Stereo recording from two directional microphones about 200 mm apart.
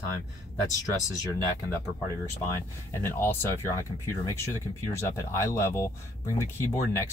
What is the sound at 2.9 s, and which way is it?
Speech, 10° left (ahead or behind).